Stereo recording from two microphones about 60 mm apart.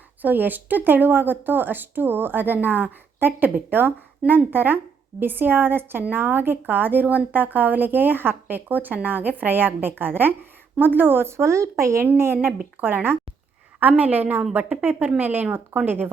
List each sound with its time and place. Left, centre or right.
0.2 s a woman's voice: right
12.1 s a woman's voice: right
14.6 s a woman's voice: centre
14.8 s a woman's voice: right